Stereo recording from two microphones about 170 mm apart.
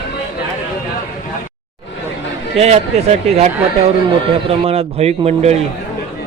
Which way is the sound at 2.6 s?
40° right (ahead or behind).